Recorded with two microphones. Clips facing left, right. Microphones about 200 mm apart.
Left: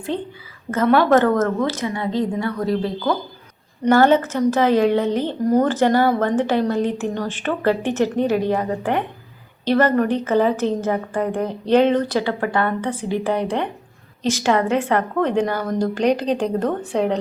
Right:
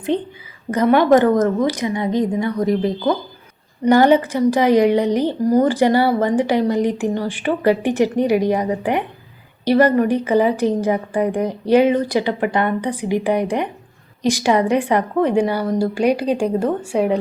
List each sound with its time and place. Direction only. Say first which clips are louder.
0.1 s a woman's voice: right 5 dB; 20° right (ahead or behind)